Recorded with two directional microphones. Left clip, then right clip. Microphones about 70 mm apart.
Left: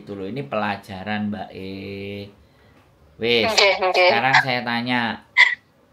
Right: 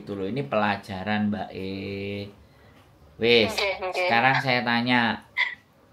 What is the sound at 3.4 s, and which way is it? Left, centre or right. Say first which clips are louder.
Speech: left 9 dB; left.